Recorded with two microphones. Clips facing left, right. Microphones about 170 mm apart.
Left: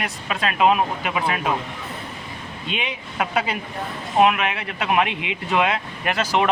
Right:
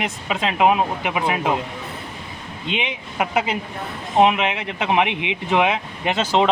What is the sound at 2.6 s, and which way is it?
Speech, 20° right (ahead or behind).